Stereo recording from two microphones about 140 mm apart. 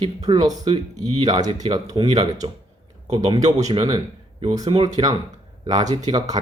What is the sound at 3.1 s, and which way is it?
Speech, 30° right (ahead or behind).